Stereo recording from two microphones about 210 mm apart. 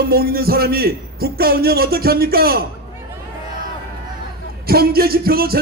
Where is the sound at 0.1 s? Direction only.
45° right (ahead or behind).